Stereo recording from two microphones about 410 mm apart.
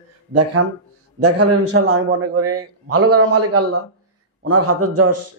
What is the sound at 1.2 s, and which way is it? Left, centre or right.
A man's voice, right.